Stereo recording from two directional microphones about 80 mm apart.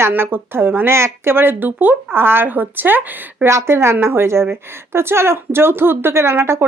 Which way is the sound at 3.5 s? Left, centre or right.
Right.